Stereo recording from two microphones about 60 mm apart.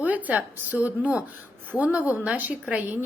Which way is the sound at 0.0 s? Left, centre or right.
Right.